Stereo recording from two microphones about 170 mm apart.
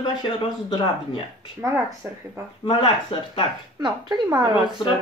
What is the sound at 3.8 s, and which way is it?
Speech, 25° right (ahead or behind).